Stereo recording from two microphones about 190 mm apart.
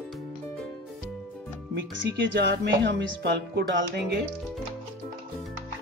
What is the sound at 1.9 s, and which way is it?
Speech, 75° right (ahead or behind).